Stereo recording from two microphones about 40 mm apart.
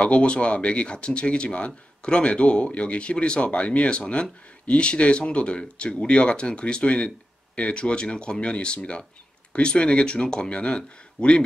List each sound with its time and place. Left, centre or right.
0.0 s speech: left